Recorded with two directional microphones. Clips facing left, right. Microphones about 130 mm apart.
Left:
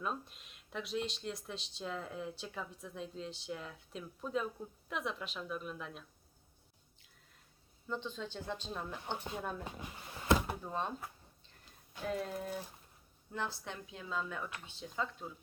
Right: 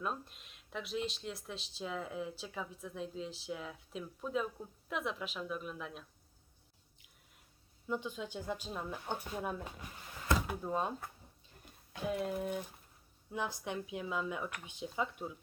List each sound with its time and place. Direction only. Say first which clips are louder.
0.0 s speech: even; centre (ahead or behind)
7.9 s speech: right 2 dB; 10° right (ahead or behind)
9.8 s a sound: left 3 dB; 25° left (ahead or behind)
10.6 s speech: right 3 dB; 10° right (ahead or behind)
12.0 s speech: right 2 dB; 5° right (ahead or behind)